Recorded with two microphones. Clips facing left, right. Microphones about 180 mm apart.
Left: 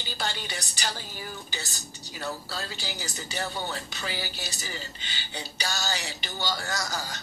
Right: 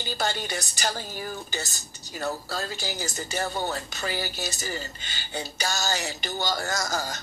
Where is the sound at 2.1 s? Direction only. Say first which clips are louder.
Right 4 dB; 45° right (ahead or behind).